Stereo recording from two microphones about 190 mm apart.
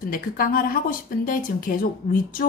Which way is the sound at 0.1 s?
50° left (ahead or behind).